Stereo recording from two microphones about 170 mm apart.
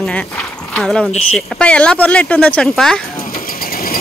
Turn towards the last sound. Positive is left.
turn(degrees=60)  # may be behind; listen again after turning